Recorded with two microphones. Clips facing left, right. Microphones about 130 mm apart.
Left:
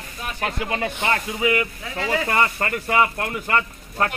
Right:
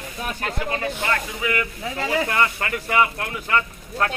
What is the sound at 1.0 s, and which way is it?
Speech, 20° left (ahead or behind).